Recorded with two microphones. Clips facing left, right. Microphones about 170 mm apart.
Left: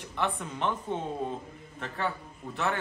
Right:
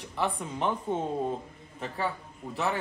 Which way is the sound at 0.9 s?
45° right (ahead or behind).